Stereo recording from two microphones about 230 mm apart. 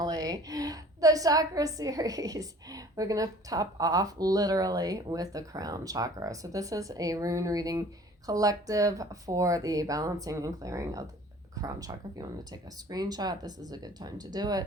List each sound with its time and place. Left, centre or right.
0.0 s a woman's voice: centre